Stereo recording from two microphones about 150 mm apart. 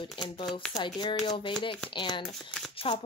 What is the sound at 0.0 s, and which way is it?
Speech, 35° left (ahead or behind).